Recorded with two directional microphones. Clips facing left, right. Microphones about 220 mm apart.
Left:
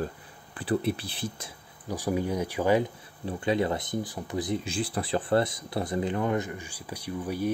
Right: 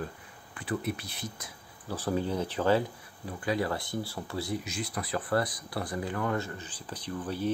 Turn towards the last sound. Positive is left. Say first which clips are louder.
# left 2 dB
turn(degrees=10)  # may be behind; listen again after turning